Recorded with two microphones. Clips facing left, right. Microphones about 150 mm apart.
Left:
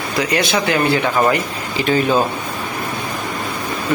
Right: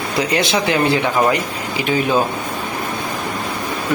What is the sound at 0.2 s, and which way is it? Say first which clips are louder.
Speech: even; 25° right (ahead or behind).